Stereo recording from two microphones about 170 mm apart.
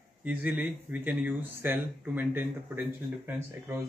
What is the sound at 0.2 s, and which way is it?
Speech, 10° right (ahead or behind).